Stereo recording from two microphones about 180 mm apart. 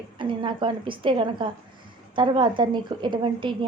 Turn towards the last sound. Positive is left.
turn(degrees=-25)  # may be behind; listen again after turning